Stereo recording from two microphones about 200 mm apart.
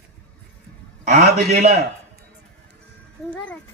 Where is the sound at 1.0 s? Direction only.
45° right (ahead or behind).